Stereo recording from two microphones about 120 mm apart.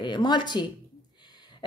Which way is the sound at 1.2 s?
35° left (ahead or behind).